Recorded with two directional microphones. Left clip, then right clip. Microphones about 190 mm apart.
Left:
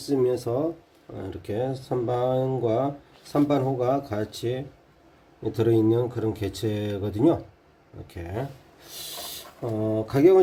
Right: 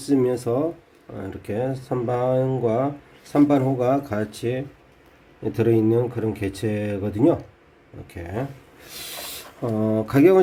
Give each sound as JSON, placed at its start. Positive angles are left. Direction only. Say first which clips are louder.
{"t": 0.0, "sound": "speech", "louder": "right 3 dB", "side_deg": -15}
{"t": 8.9, "sound": "speech", "louder": "right 2 dB", "side_deg": -20}